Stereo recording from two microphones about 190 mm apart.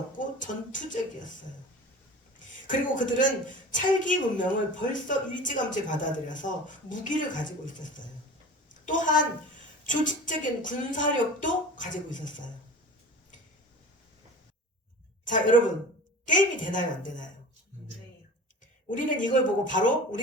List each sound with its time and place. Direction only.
0.2 s speech: 45° left (ahead or behind)
2.6 s a woman's voice: 45° left (ahead or behind)
15.2 s a man's voice: 45° left (ahead or behind)
18.9 s speech: 45° left (ahead or behind)